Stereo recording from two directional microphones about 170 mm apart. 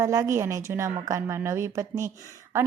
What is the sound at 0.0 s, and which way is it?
A woman's voice, 15° right (ahead or behind).